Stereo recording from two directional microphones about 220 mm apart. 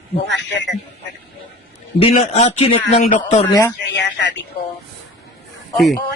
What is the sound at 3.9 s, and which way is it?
Speech, 50° left (ahead or behind).